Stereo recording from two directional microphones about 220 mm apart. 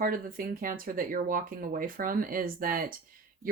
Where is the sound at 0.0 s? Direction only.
40° right (ahead or behind).